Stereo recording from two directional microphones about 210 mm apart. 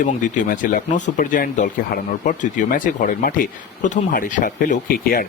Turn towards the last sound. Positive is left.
turn(degrees=40)  # may be behind; listen again after turning